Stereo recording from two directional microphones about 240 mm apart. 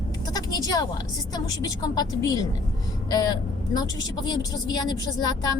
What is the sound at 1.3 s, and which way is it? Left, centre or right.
A woman's voice, centre.